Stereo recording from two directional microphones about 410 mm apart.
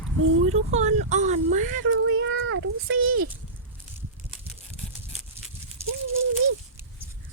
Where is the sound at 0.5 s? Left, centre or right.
Centre.